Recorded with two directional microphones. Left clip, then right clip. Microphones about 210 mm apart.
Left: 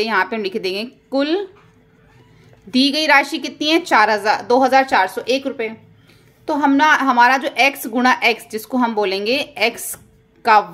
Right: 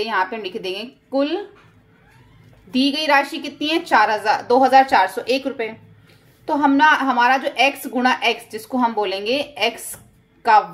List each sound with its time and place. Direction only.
0.0 s a woman's voice: 30° left (ahead or behind)
2.7 s a woman's voice: 30° left (ahead or behind)